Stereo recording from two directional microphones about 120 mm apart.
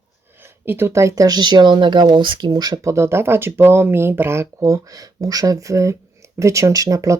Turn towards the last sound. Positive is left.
turn(degrees=-25)  # may be behind; listen again after turning